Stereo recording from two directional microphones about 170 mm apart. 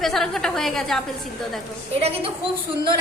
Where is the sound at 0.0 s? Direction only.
Centre (ahead or behind).